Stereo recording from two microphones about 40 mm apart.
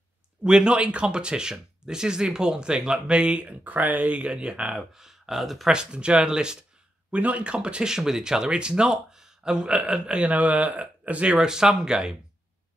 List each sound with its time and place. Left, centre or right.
0.4 s speech: right
3.6 s speech: right; by 5.7 s centre
5.7 s speech: right
7.1 s speech: right
10.2 s speech: right
11.3 s speech: centre